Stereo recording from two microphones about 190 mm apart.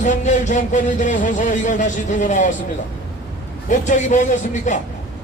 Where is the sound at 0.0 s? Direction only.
40° left (ahead or behind).